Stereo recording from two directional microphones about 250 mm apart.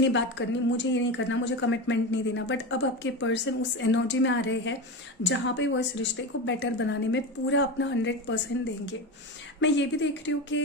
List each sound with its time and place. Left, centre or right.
0.1 s a woman's voice: left
9.6 s a woman's voice: left